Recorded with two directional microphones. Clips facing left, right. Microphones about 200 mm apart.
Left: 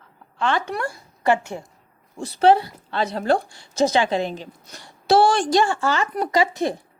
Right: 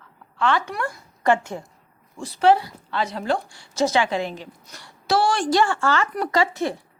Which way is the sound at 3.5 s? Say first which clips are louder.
Left 2 dB; 20° left (ahead or behind).